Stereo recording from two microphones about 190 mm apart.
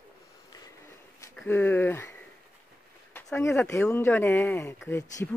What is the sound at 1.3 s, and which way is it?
Speech, 10° left (ahead or behind).